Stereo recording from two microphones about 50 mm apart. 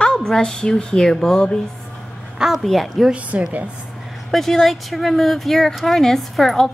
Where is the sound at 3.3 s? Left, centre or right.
Right.